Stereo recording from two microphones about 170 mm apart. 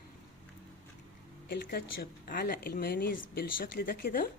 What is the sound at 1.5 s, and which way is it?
A woman's voice, 65° left (ahead or behind).